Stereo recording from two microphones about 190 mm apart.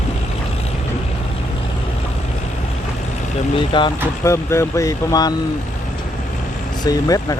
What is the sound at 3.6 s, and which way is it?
Speech, 25° left (ahead or behind).